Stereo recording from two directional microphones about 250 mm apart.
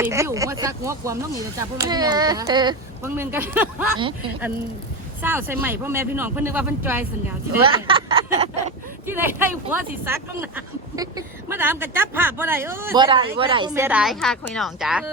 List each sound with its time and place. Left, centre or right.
0.0 s speech: centre
5.2 s speech: centre
7.6 s a sound: right
9.0 s speech: centre
13.1 s a woman's voice: right; by 15.1 s centre